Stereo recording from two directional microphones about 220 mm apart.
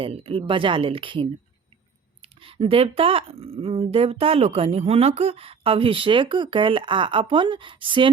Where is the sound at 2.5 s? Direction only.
25° right (ahead or behind).